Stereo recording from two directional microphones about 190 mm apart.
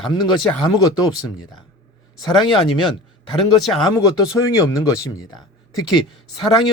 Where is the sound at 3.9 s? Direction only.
15° left (ahead or behind).